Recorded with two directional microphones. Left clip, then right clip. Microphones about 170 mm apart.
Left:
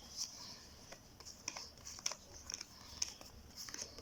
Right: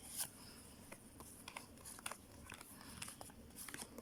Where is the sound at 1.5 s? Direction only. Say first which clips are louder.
Left 4 dB; 5° left (ahead or behind).